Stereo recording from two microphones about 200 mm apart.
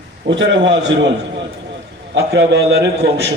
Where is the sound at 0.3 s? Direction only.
65° right (ahead or behind).